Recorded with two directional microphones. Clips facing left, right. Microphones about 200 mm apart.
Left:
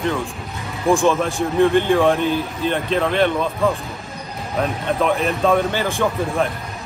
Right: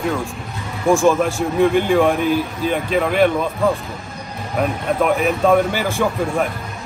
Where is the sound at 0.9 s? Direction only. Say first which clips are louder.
Right 2 dB; 15° right (ahead or behind); by 6.5 s centre (ahead or behind).